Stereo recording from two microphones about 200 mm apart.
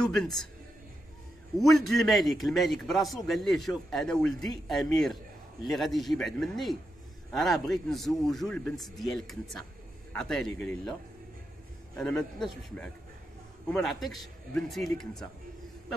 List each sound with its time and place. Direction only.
0.0 s a man's voice: centre (ahead or behind)
1.6 s a man's voice: centre (ahead or behind)
12.0 s a man's voice: 5° left (ahead or behind)